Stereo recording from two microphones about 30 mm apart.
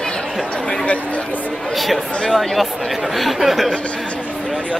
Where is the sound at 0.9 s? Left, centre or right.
Left.